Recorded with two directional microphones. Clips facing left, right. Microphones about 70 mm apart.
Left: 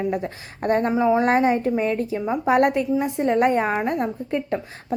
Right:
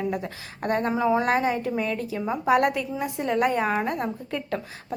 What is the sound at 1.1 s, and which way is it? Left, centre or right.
A woman's voice, left.